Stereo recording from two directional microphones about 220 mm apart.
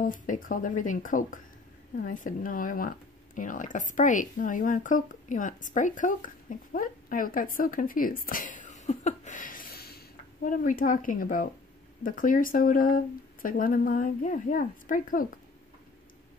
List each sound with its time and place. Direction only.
0.0 s speech: 35° left (ahead or behind)